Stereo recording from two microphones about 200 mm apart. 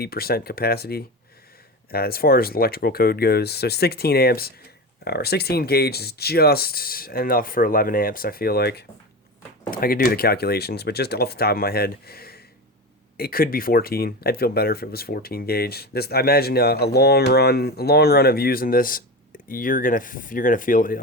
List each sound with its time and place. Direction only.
0.0 s speech: 50° left (ahead or behind)